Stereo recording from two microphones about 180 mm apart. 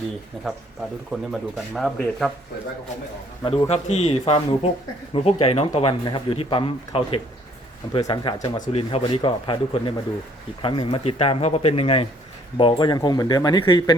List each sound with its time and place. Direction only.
0.4 s speech: centre (ahead or behind)
3.4 s speech: 30° left (ahead or behind)